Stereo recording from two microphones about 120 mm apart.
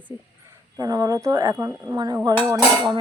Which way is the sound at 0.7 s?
30° right (ahead or behind).